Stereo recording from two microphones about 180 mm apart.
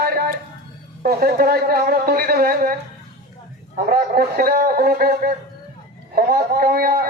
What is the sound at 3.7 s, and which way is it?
Speech, 55° right (ahead or behind).